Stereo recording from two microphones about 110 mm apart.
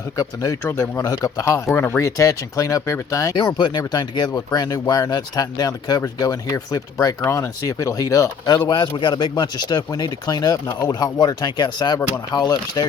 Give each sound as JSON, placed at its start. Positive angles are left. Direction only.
{"t": 0.2, "sound": "speech", "side_deg": 25}
{"t": 3.3, "sound": "speech", "side_deg": 40}